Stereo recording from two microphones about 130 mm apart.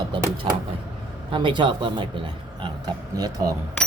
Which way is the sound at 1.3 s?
40° right (ahead or behind).